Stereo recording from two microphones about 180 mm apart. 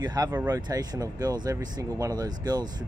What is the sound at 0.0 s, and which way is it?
Speech, 20° right (ahead or behind).